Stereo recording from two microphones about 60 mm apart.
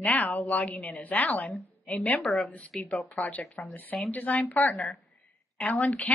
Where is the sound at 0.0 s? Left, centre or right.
Left.